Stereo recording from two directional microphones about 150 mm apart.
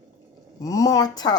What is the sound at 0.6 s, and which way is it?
Speech, 25° left (ahead or behind).